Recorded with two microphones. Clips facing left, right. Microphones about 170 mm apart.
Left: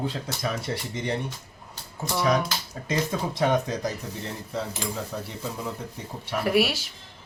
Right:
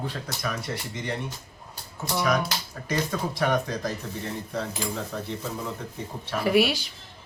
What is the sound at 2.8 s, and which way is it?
Speech, 20° left (ahead or behind).